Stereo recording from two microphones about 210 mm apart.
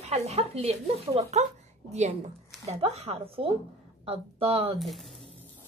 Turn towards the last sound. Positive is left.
turn(degrees=0)  # may be behind; listen again after turning